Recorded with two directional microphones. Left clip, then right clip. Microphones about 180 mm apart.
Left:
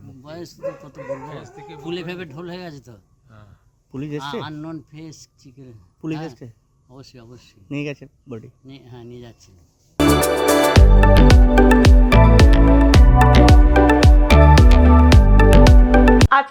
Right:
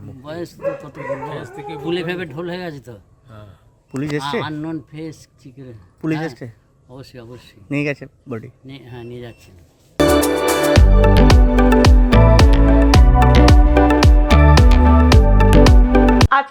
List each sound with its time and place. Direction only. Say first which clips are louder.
0.2 s speech: right 5 dB; centre (ahead or behind)
1.5 s speech: right 8 dB; 70° right (ahead or behind)
1.8 s speech: right 6 dB; centre (ahead or behind)
10.1 s music: left 1 dB; centre (ahead or behind)